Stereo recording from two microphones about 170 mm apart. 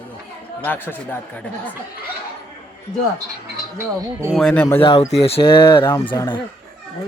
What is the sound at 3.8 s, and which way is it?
Speech, 15° right (ahead or behind).